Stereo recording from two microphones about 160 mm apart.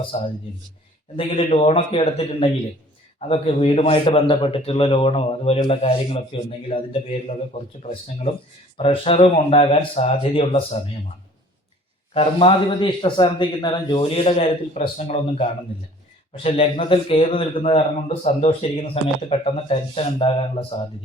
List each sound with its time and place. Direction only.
0.1 s a man's voice: 40° left (ahead or behind)
8.8 s a man's voice: 35° left (ahead or behind)
12.1 s a man's voice: 35° left (ahead or behind)
14.3 s a man's voice: 40° left (ahead or behind)